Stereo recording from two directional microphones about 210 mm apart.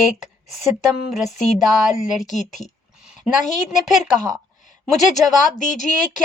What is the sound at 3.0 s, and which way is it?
A woman's voice, 5° right (ahead or behind).